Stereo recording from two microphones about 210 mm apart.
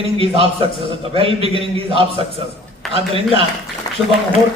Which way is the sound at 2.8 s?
Centre (ahead or behind).